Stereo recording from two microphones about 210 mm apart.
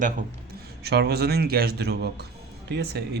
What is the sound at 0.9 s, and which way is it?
A man's voice, 50° right (ahead or behind).